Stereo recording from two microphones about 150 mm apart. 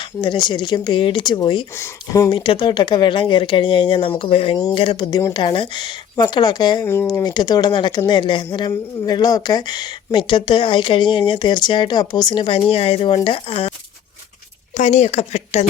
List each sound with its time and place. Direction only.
0.2 s speech: 30° left (ahead or behind)
2.3 s speech: 35° left (ahead or behind)
6.8 s speech: 15° left (ahead or behind); by 13.7 s 40° left (ahead or behind)
14.8 s speech: 50° left (ahead or behind)